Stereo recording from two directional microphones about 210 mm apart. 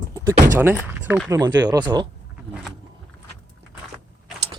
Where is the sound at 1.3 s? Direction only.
20° right (ahead or behind).